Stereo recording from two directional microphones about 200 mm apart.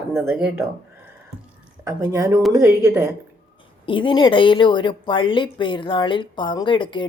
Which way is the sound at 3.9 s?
25° left (ahead or behind).